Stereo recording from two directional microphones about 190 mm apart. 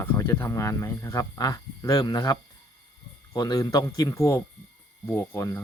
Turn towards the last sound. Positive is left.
turn(degrees=15)  # may be behind; listen again after turning